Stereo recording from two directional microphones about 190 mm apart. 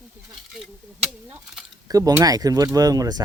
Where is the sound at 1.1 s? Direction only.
5° right (ahead or behind).